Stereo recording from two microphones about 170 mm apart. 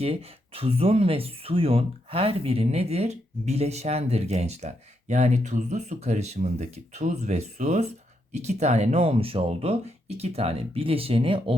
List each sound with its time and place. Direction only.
0.0 s speech: 35° right (ahead or behind)